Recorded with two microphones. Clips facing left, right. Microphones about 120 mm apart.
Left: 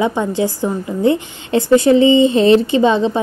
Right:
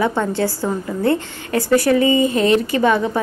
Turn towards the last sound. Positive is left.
turn(degrees=20)  # may be behind; listen again after turning